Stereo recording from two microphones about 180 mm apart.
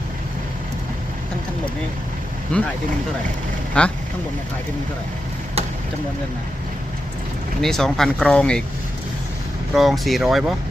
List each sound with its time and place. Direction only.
2.5 s speech: 5° left (ahead or behind)
3.8 s speech: 5° left (ahead or behind)
7.6 s speech: centre (ahead or behind)
9.7 s speech: centre (ahead or behind)